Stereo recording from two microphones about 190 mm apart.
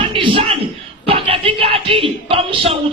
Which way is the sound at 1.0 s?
30° right (ahead or behind).